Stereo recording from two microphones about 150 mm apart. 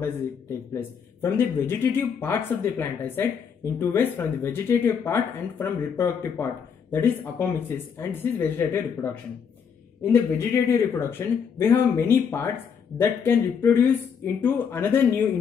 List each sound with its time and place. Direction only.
0.0 s speech: 15° left (ahead or behind)